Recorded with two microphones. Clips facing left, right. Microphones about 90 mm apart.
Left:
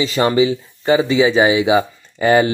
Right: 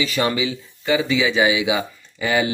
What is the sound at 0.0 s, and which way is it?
Speech, 30° left (ahead or behind).